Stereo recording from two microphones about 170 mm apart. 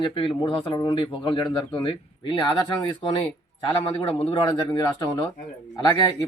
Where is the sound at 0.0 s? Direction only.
30° left (ahead or behind).